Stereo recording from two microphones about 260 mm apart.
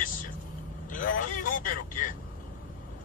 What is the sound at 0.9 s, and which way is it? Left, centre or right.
Speech, left.